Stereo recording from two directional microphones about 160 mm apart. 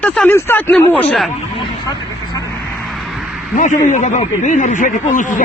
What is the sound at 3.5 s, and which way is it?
Speech, 50° left (ahead or behind).